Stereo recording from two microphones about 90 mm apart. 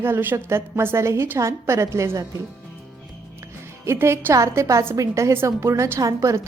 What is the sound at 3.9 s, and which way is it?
Speech, 30° right (ahead or behind).